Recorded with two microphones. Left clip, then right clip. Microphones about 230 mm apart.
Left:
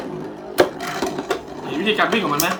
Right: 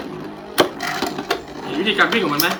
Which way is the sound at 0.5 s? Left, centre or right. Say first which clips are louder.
Even; centre.